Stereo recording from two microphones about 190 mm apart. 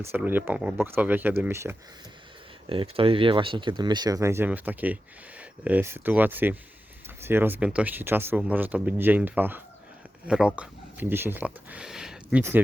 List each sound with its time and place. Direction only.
0.0 s speech: 10° right (ahead or behind)
2.6 s speech: 30° right (ahead or behind); by 12.6 s 10° right (ahead or behind)